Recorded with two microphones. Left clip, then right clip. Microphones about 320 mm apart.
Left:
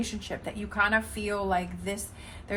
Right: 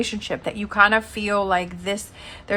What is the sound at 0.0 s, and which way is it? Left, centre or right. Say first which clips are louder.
A woman's voice: right 9 dB; right.